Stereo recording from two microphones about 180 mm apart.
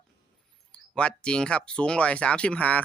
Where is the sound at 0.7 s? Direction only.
5° left (ahead or behind).